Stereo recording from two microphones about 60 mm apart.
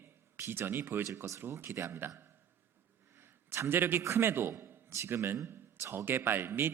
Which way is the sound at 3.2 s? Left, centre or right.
Right.